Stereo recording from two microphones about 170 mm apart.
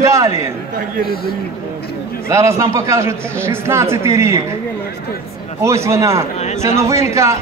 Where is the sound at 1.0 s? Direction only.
65° left (ahead or behind).